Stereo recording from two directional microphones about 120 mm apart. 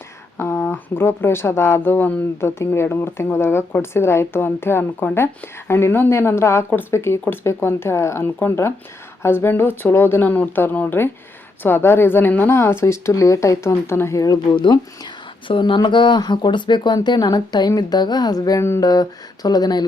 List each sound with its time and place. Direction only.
0.3 s speech: 20° left (ahead or behind)
14.5 s speech: 40° left (ahead or behind)